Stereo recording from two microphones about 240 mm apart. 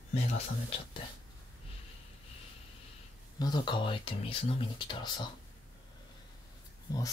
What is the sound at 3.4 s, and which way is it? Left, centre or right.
Speech, centre.